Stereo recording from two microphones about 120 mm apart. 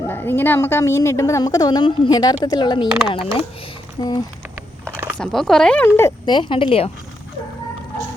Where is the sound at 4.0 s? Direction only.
35° left (ahead or behind).